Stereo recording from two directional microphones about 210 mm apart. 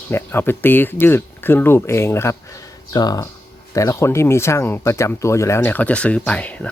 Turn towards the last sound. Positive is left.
turn(degrees=5)  # may be behind; listen again after turning